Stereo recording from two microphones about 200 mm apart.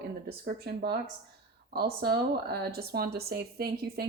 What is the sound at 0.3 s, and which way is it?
A woman's voice, 50° right (ahead or behind).